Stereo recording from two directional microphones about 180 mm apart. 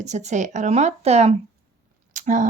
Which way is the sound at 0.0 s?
40° right (ahead or behind).